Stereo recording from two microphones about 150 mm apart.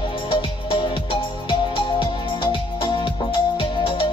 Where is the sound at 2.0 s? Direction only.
35° left (ahead or behind).